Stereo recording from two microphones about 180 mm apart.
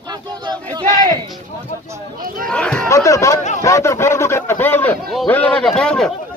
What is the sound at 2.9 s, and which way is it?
Speech, 15° left (ahead or behind).